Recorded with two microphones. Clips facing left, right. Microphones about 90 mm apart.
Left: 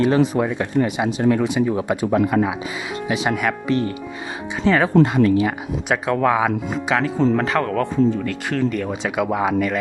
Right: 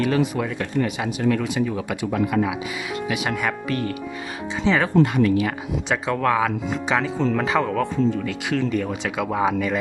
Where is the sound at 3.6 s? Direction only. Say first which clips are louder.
Left 5 dB; 25° left (ahead or behind).